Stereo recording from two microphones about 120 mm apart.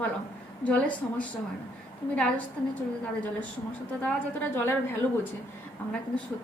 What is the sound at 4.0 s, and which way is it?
Speech, 15° left (ahead or behind).